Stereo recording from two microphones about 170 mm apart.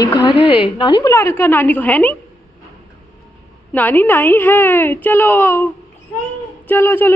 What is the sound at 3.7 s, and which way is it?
A woman's voice, 10° left (ahead or behind).